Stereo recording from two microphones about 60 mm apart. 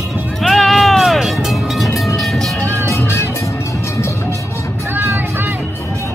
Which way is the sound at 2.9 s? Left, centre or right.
Left.